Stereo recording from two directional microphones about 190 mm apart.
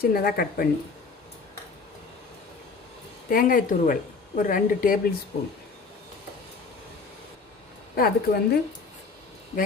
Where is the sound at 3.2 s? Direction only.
50° left (ahead or behind).